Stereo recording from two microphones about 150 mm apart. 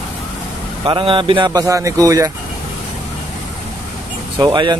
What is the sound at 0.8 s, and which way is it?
A man's voice, 35° right (ahead or behind).